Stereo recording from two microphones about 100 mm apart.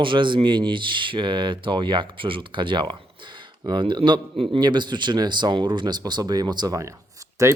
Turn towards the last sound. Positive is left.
turn(degrees=-30)  # may be behind; listen again after turning